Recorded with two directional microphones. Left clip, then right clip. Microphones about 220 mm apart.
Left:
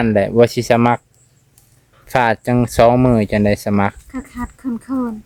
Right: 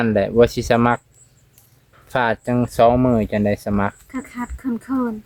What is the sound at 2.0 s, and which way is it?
Speech, 35° left (ahead or behind).